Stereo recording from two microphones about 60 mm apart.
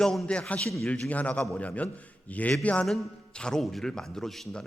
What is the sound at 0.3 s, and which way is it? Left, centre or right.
A man's voice, left.